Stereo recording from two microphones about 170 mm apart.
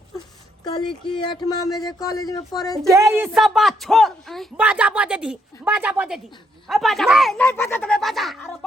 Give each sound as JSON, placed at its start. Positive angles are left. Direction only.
{"t": 0.6, "sound": "speech", "side_deg": 25}
{"t": 2.8, "sound": "a woman's voice", "side_deg": -15}
{"t": 3.3, "sound": "a woman's voice", "side_deg": 0}
{"t": 7.4, "sound": "a woman's voice", "side_deg": 10}